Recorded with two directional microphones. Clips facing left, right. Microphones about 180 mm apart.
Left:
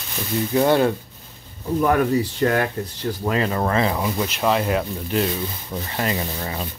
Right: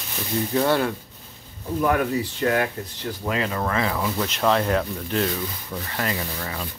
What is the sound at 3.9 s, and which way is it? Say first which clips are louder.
Speech: left 2 dB; 15° left (ahead or behind).